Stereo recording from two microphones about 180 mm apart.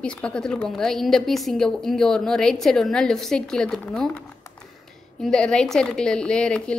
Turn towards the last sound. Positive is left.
turn(degrees=5)  # may be behind; listen again after turning